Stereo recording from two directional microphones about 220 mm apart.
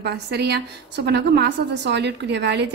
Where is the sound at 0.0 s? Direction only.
50° right (ahead or behind).